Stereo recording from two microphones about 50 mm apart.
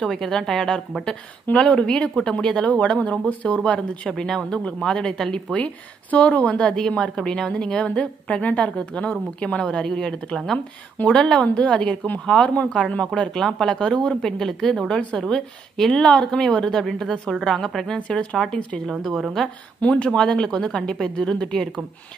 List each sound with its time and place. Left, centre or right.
0.0 s a woman's voice: centre
1.5 s a woman's voice: left
4.1 s a woman's voice: centre
14.9 s a woman's voice: left
17.9 s a woman's voice: left
18.9 s a woman's voice: centre
19.8 s a woman's voice: left